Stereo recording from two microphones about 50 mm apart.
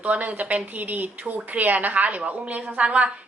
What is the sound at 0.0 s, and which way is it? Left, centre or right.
A woman's voice, right.